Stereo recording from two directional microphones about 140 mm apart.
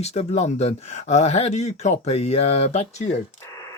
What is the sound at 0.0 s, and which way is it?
Speech, 50° left (ahead or behind).